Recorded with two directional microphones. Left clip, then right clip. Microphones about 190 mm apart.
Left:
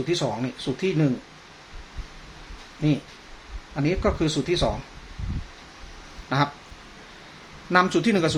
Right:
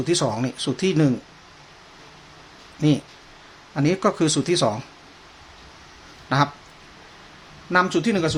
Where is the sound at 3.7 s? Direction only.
25° right (ahead or behind).